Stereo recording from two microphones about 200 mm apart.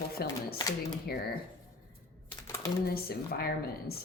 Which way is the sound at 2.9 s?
50° left (ahead or behind).